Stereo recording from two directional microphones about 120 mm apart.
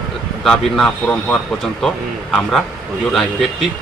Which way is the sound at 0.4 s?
5° left (ahead or behind).